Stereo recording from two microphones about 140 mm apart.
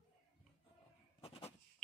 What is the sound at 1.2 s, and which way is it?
Goat, 45° left (ahead or behind).